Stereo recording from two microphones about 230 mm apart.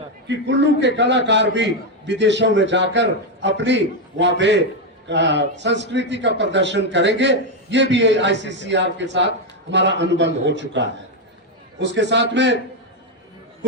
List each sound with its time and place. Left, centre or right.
0.3 s a man's voice: right